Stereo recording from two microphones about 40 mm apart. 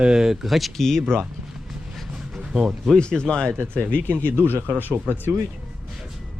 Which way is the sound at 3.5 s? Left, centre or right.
Right.